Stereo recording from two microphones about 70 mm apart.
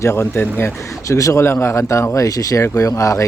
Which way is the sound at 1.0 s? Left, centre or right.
Left.